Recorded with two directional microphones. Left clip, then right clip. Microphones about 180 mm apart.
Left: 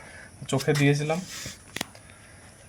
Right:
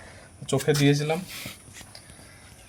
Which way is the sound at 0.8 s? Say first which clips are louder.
Right 1 dB; 5° right (ahead or behind).